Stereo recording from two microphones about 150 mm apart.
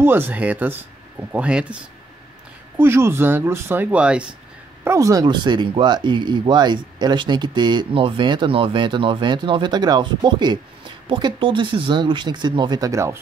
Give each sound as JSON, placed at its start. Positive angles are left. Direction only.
{"t": 0.0, "sound": "speech", "side_deg": -15}
{"t": 2.8, "sound": "speech", "side_deg": -15}
{"t": 4.8, "sound": "speech", "side_deg": -20}